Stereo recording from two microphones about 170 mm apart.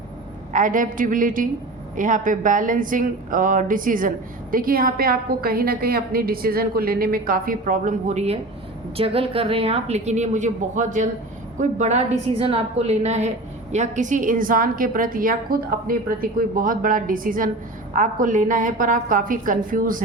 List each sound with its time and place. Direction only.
0.5 s a woman's voice: 50° right (ahead or behind)